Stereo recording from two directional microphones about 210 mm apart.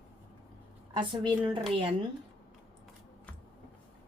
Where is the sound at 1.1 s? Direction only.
25° right (ahead or behind).